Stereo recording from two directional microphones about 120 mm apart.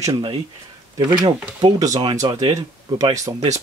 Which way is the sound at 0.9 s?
40° right (ahead or behind).